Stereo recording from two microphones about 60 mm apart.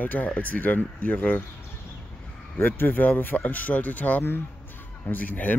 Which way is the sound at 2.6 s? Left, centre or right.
Left.